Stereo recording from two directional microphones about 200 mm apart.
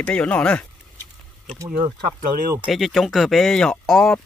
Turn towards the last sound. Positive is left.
turn(degrees=0)  # may be behind; listen again after turning